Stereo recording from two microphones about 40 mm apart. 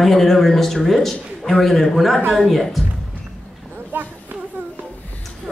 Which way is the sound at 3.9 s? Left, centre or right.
Right.